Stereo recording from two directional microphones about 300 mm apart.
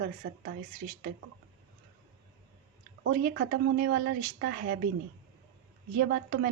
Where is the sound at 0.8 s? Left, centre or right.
Right.